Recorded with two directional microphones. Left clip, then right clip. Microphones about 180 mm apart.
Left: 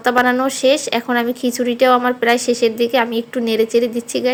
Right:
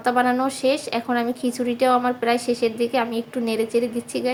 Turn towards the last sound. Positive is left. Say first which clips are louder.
# left 6 dB
turn(degrees=25)  # may be behind; listen again after turning